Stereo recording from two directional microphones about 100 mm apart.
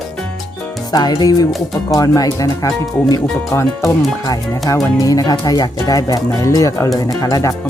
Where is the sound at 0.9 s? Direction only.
45° left (ahead or behind).